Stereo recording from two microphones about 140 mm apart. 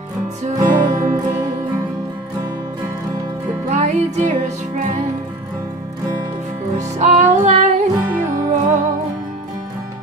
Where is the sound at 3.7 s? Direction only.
55° right (ahead or behind).